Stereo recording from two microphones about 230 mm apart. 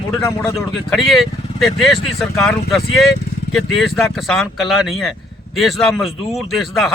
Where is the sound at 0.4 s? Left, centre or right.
Centre.